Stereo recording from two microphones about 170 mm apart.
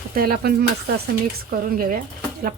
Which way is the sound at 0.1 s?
60° right (ahead or behind).